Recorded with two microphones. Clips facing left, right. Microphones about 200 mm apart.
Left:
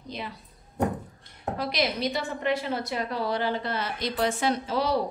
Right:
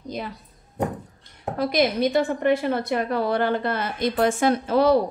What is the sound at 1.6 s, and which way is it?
A woman's voice, 50° right (ahead or behind).